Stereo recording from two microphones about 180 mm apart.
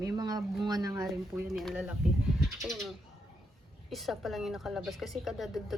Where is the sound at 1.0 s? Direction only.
Centre (ahead or behind).